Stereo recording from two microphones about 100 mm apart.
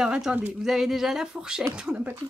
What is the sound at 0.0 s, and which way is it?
Speech, 10° right (ahead or behind).